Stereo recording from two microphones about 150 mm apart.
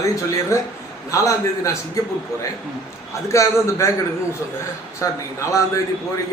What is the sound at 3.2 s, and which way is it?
Speech, 20° left (ahead or behind).